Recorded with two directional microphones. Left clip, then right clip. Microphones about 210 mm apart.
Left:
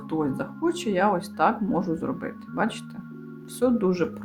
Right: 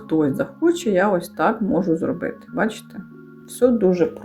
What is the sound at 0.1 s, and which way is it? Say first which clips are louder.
Speech: right 8 dB; 5° right (ahead or behind).